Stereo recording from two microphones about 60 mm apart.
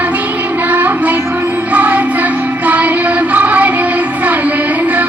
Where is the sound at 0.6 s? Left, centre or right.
Right.